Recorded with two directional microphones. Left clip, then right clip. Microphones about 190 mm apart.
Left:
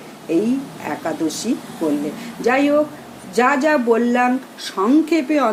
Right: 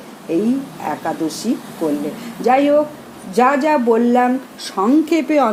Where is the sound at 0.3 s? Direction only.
15° right (ahead or behind).